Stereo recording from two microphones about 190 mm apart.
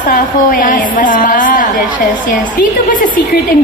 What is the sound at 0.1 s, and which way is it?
A woman's voice, 45° left (ahead or behind).